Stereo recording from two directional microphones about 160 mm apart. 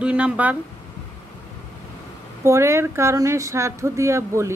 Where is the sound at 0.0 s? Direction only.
10° right (ahead or behind).